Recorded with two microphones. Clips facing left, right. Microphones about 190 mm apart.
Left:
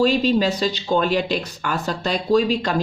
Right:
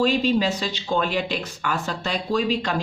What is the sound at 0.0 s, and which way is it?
Speech, 40° left (ahead or behind).